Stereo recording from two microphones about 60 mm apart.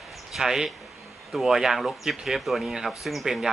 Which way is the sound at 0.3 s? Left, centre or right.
Centre.